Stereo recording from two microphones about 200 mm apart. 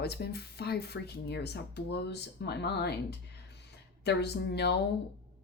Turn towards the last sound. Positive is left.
turn(degrees=55)  # may be behind; listen again after turning